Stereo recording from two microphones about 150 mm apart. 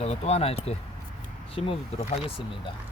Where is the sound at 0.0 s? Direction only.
45° left (ahead or behind).